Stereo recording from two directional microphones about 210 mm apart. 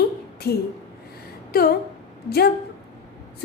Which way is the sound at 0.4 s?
50° left (ahead or behind).